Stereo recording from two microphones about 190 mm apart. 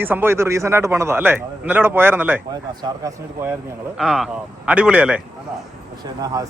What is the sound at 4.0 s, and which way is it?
Speech, centre (ahead or behind).